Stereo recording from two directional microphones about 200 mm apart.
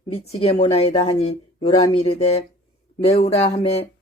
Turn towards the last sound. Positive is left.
turn(degrees=30)  # may be behind; listen again after turning